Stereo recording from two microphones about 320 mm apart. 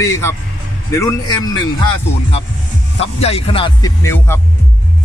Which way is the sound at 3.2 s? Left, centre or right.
Centre.